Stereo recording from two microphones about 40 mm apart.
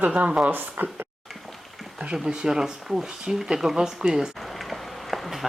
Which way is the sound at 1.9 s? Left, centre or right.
Right.